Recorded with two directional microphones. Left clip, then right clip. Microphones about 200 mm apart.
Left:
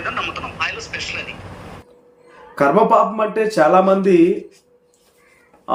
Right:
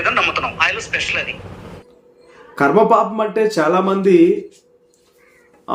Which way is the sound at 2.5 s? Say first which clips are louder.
Right 1 dB; 5° right (ahead or behind).